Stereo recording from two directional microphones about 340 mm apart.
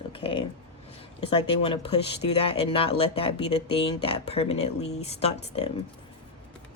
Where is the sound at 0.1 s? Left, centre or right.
Centre.